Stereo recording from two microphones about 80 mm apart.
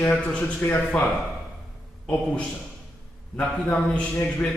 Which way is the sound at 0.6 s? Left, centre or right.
Left.